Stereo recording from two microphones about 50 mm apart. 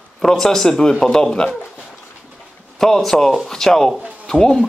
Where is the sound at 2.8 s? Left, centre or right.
Centre.